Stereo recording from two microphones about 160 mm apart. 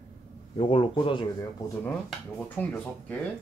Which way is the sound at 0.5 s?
35° left (ahead or behind).